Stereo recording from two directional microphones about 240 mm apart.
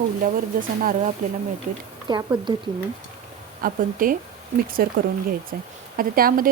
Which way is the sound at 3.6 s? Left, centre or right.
Right.